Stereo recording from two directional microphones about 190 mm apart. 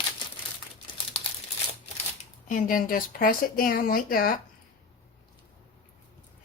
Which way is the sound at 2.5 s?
45° left (ahead or behind).